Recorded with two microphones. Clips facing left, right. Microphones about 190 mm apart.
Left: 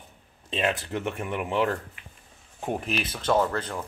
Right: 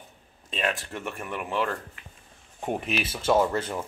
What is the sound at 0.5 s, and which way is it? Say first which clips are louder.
Speech: left 3 dB; 20° left (ahead or behind).